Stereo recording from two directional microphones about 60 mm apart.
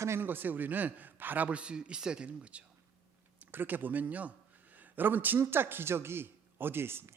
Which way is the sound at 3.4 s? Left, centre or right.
Right.